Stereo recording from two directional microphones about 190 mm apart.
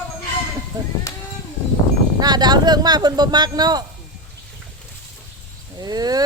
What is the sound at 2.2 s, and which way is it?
Speech, 20° right (ahead or behind).